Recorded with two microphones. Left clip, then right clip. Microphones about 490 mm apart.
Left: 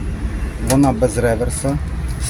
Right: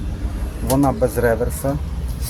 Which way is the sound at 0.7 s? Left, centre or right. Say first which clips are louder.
Left 2 dB; right.